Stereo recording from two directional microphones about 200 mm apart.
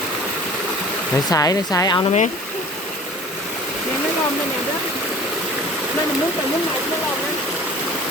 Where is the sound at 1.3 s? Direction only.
15° left (ahead or behind).